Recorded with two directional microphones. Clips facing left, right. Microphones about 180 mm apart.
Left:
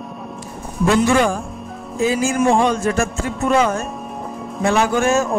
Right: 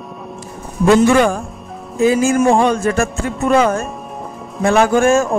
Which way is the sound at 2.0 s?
55° right (ahead or behind).